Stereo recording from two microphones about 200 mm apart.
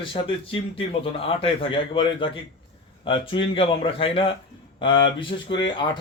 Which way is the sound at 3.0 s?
25° left (ahead or behind).